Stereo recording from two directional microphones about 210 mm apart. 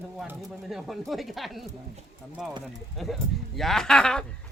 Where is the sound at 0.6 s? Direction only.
Centre (ahead or behind).